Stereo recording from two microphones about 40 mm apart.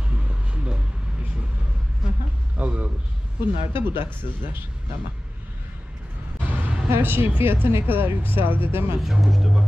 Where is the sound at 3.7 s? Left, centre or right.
Right.